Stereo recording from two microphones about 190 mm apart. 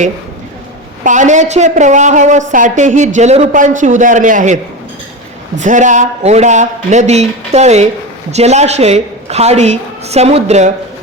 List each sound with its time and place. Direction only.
1.0 s a woman's voice: 40° right (ahead or behind)